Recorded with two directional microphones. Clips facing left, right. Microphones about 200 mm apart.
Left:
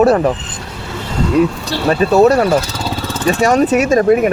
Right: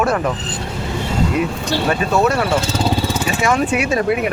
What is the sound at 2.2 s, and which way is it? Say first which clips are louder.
Speech: left 7 dB; 35° left (ahead or behind).